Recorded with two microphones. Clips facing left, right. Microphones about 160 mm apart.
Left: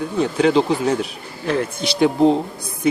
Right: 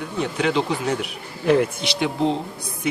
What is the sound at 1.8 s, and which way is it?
Speech, 40° left (ahead or behind).